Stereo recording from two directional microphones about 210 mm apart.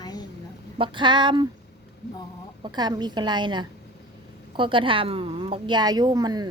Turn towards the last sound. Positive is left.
turn(degrees=-20)  # may be behind; listen again after turning